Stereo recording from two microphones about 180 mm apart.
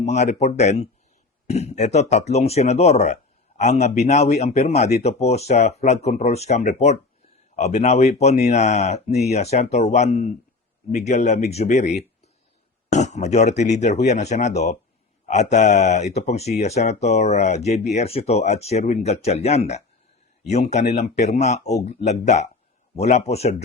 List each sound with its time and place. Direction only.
0.0 s speech: 40° left (ahead or behind)
12.9 s speech: 40° left (ahead or behind)